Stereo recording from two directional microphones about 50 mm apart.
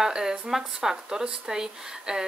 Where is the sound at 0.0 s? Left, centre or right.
Centre.